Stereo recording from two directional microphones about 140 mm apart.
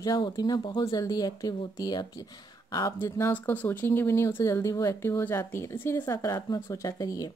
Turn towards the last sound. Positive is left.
turn(degrees=25)  # may be behind; listen again after turning